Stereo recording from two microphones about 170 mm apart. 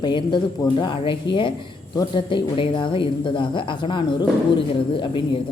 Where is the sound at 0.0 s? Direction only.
30° left (ahead or behind).